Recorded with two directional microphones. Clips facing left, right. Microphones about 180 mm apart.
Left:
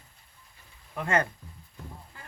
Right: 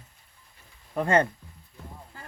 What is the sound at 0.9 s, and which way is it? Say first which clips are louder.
Speech: right 5 dB; 35° right (ahead or behind).